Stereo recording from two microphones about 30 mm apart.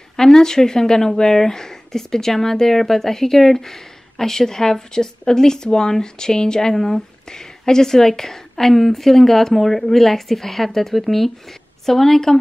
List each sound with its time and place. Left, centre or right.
0.1 s speech: centre